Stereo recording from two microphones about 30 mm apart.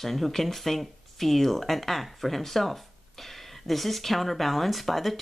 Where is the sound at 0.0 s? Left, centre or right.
Centre.